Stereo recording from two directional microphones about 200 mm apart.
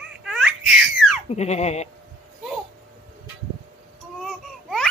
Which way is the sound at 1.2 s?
35° left (ahead or behind).